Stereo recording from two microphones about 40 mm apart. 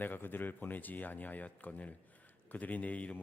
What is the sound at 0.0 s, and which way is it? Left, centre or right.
Speech, left.